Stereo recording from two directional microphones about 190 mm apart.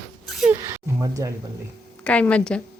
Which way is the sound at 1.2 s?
15° right (ahead or behind).